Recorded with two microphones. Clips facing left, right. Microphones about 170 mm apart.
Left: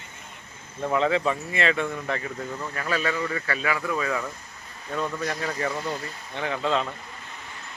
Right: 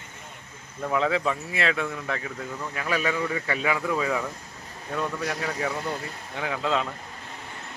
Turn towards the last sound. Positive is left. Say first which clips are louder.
# left 1 dB
turn(degrees=-5)  # may be behind; listen again after turning